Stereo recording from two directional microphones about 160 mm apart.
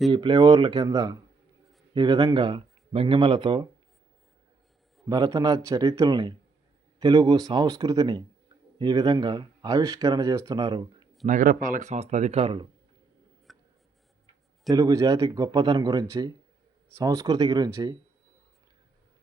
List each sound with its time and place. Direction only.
0.1 s speech: 30° right (ahead or behind)
5.0 s speech: 25° right (ahead or behind)
11.3 s speech: 60° right (ahead or behind); by 12.6 s 35° right (ahead or behind)
13.5 s writing: centre (ahead or behind)
14.7 s speech: 20° right (ahead or behind)